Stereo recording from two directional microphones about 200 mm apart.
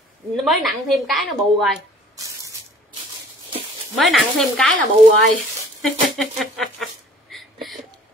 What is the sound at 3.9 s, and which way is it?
A woman's voice, centre (ahead or behind).